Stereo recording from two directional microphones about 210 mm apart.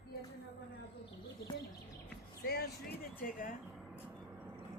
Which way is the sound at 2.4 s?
50° left (ahead or behind).